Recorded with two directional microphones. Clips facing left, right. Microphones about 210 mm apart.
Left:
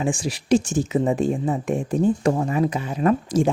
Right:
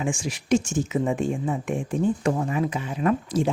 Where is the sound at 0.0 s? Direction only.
35° left (ahead or behind).